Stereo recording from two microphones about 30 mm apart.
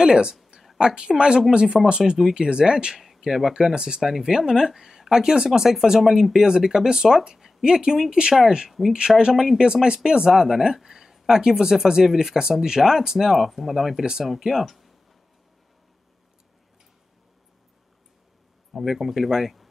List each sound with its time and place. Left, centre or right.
0.0 s a woman's voice: right
3.2 s speech: centre
3.5 s a woman's voice: right
5.5 s a woman's voice: centre
8.6 s speech: centre
10.0 s a woman's voice: right; by 14.9 s centre
18.9 s speech: centre